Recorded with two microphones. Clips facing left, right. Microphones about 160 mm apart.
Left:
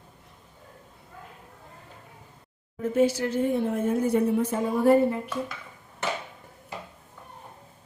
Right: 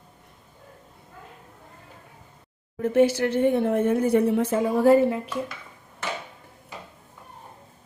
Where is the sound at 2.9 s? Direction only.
70° right (ahead or behind); by 5.3 s 90° right.